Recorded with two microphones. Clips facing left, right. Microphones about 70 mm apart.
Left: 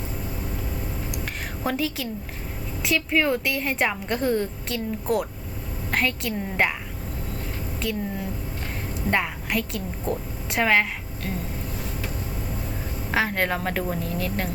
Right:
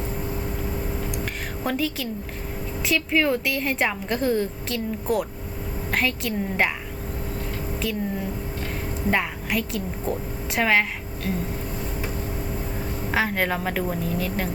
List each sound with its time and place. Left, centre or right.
1.1 s a sound: centre
2.8 s a woman's voice: centre
7.8 s a woman's voice: centre
13.1 s a woman's voice: centre